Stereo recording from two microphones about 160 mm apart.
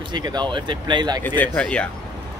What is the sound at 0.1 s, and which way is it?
Speech, 25° right (ahead or behind).